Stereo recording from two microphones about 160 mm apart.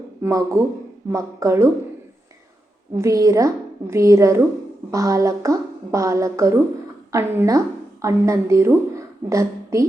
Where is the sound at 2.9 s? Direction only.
20° right (ahead or behind).